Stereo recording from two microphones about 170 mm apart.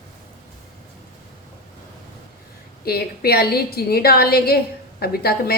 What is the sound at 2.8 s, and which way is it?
A woman's voice, 65° left (ahead or behind).